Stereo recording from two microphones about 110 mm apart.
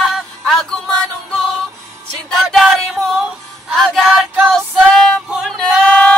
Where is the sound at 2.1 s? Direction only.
Centre (ahead or behind).